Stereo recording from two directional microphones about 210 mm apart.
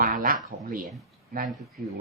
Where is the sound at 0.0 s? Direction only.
40° right (ahead or behind).